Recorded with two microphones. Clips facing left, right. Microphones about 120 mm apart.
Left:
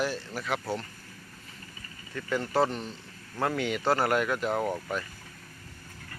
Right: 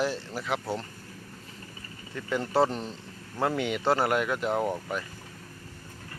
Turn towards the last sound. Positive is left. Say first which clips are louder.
# right 1 dB
turn(degrees=-15)  # may be behind; listen again after turning